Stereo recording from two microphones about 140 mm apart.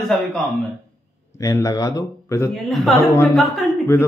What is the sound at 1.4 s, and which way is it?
A man's voice, 25° left (ahead or behind).